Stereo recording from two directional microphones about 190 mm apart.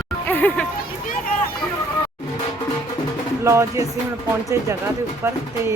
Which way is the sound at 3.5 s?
15° right (ahead or behind).